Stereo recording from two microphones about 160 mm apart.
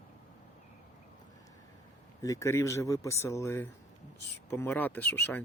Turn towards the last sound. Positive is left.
turn(degrees=10)  # may be behind; listen again after turning